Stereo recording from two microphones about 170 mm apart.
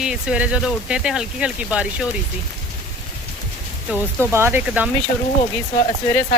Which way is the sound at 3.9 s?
15° right (ahead or behind).